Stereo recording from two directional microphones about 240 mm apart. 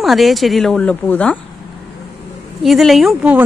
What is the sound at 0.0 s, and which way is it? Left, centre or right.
A woman's voice, centre.